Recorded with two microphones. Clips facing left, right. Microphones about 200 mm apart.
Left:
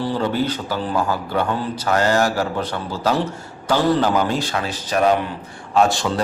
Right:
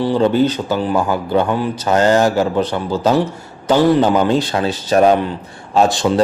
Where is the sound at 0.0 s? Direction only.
20° right (ahead or behind).